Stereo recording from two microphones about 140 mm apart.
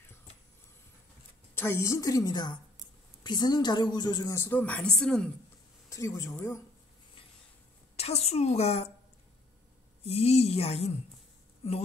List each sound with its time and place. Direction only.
1.5 s a woman's voice: 15° left (ahead or behind)
5.9 s a woman's voice: 20° left (ahead or behind)
7.9 s a woman's voice: 50° left (ahead or behind)
10.0 s speech: 50° left (ahead or behind)